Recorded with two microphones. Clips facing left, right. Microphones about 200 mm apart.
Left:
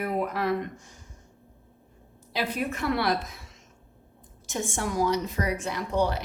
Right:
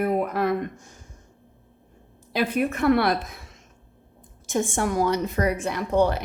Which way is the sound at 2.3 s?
55° right (ahead or behind).